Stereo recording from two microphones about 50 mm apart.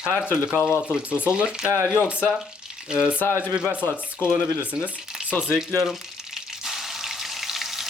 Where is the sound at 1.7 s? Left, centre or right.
Left.